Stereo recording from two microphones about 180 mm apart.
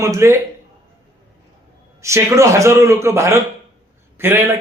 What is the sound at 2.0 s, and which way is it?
Speech, 15° right (ahead or behind).